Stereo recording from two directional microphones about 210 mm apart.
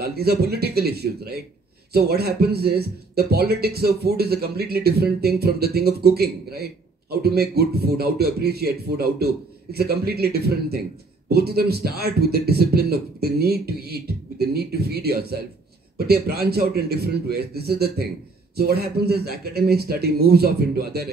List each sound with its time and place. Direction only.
0.0 s speech: 50° right (ahead or behind)